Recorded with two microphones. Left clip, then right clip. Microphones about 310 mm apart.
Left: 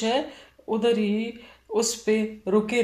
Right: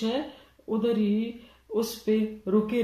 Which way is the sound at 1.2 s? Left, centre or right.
Left.